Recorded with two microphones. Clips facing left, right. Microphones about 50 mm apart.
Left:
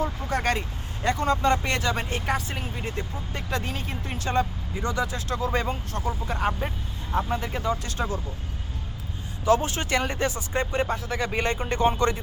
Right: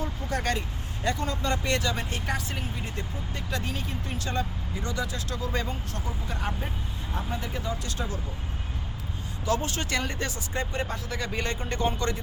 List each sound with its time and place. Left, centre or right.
0.0 s vehicle: left
1.0 s speech: left
3.3 s speech: left
4.3 s speech: left
9.5 s speech: left